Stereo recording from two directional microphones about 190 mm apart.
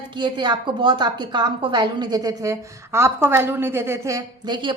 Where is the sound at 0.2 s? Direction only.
25° right (ahead or behind).